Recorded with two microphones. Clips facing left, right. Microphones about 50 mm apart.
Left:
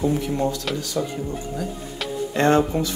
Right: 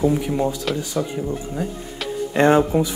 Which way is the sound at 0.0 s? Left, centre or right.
Centre.